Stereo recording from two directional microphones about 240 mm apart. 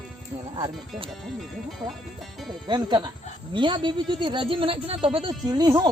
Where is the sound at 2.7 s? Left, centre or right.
Centre.